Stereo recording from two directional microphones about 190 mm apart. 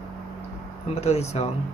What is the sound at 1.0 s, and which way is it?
Speech, 35° left (ahead or behind).